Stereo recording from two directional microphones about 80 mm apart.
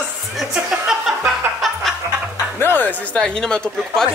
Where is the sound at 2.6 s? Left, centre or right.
Left.